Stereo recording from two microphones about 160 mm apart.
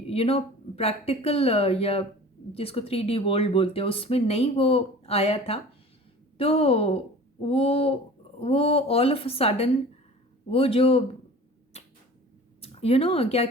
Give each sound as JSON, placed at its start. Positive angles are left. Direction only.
{"t": 0.1, "sound": "speech", "side_deg": 35}
{"t": 11.7, "sound": "arrow", "side_deg": 40}
{"t": 12.6, "sound": "speech", "side_deg": 40}